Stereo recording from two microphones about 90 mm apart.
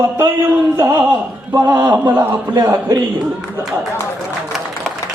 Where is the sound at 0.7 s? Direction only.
40° right (ahead or behind).